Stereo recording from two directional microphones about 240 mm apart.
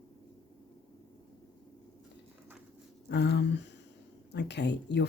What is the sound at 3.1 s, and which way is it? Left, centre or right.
Speech, left.